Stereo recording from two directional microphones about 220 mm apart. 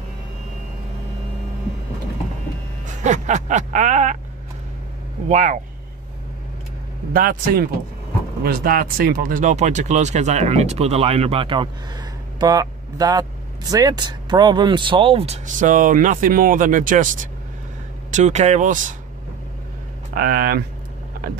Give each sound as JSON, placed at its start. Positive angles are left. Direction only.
{"t": 3.0, "sound": "speech", "side_deg": -35}
{"t": 5.3, "sound": "speech", "side_deg": -30}
{"t": 7.2, "sound": "speech", "side_deg": -40}
{"t": 20.2, "sound": "speech", "side_deg": -40}